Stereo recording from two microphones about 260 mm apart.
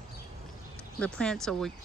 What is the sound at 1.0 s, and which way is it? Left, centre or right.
Speech, centre.